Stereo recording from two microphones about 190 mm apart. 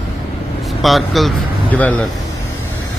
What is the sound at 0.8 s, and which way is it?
Speech, centre (ahead or behind).